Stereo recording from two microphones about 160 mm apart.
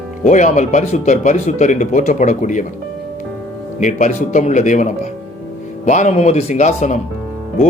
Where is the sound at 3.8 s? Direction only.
50° left (ahead or behind).